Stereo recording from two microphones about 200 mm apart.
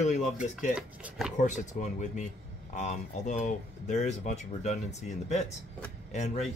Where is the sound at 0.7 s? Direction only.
5° right (ahead or behind).